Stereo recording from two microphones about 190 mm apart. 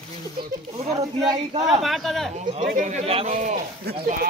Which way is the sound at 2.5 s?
40° right (ahead or behind).